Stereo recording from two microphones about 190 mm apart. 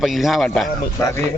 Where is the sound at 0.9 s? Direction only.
15° left (ahead or behind).